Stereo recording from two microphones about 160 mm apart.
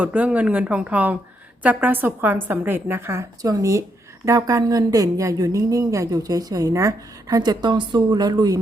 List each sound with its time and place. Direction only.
0.0 s a woman's voice: 10° right (ahead or behind); by 8.5 s 25° right (ahead or behind)